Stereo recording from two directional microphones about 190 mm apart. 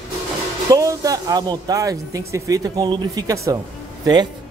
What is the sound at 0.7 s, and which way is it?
Speech, 15° right (ahead or behind).